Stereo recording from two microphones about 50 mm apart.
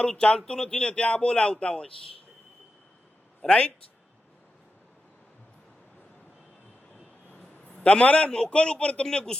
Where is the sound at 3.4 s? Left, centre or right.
Centre.